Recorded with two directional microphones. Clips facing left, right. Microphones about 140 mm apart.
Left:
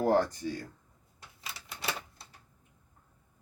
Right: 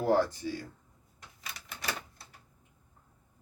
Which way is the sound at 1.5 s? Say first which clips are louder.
Left 1 dB; 25° left (ahead or behind).